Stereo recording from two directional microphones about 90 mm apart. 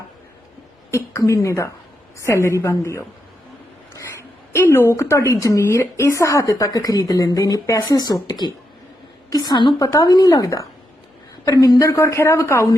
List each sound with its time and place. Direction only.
0.9 s a woman's voice: 30° left (ahead or behind)
4.5 s a woman's voice: 25° left (ahead or behind)
6.4 s speech: 45° left (ahead or behind)
11.8 s a woman's voice: 30° left (ahead or behind)